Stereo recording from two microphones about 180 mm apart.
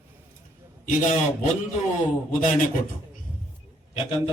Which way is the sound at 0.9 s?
45° left (ahead or behind).